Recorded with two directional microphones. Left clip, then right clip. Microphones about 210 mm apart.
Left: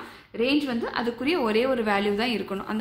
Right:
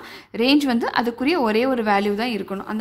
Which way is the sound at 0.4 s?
40° right (ahead or behind).